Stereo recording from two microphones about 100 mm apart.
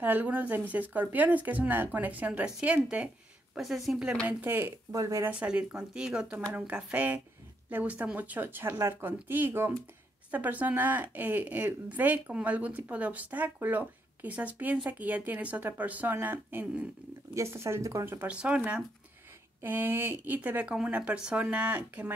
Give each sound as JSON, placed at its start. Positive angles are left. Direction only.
{"t": 0.0, "sound": "a woman's voice", "side_deg": -20}
{"t": 3.5, "sound": "speech", "side_deg": 0}
{"t": 4.3, "sound": "speech", "side_deg": -20}
{"t": 4.9, "sound": "speech", "side_deg": -30}
{"t": 5.3, "sound": "a woman's voice", "side_deg": -15}
{"t": 18.3, "sound": "a woman's voice", "side_deg": -10}